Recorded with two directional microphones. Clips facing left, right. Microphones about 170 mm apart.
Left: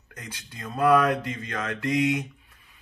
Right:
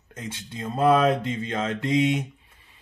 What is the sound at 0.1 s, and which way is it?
Speech, 25° right (ahead or behind).